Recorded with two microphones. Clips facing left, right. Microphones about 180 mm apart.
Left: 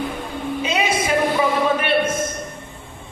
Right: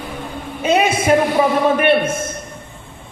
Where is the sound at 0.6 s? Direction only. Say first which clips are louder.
Right 8 dB; 55° right (ahead or behind).